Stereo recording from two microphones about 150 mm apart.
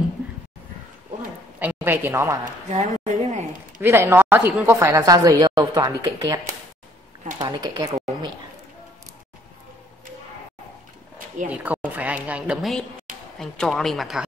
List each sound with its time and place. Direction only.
1.6 s speech: 10° right (ahead or behind)
2.7 s a woman's voice: 50° right (ahead or behind)
3.0 s a sound: 45° right (ahead or behind)
3.8 s speech: 15° right (ahead or behind)
11.4 s speech: 10° right (ahead or behind)
13.4 s a woman's voice: centre (ahead or behind)